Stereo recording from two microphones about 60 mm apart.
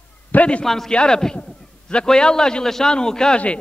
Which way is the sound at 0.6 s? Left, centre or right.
Centre.